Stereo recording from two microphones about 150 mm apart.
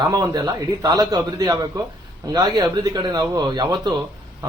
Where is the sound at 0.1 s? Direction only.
25° right (ahead or behind).